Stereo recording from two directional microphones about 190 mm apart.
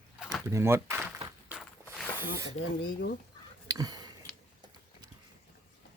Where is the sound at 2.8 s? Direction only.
60° left (ahead or behind).